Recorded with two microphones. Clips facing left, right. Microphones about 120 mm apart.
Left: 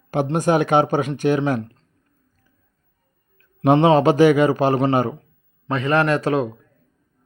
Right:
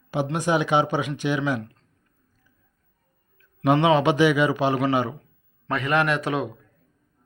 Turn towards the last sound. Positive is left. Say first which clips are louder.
# left 5 dB
turn(degrees=35)  # may be behind; listen again after turning